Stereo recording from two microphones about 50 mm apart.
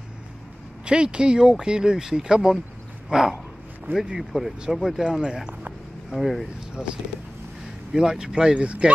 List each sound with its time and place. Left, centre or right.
0.8 s speech: centre
3.1 s a sound: centre
3.9 s speech: centre
6.8 s speech: centre